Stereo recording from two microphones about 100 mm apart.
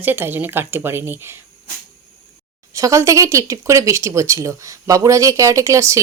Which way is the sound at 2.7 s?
30° right (ahead or behind).